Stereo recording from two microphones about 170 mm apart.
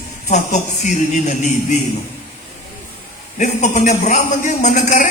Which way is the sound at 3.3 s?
45° left (ahead or behind).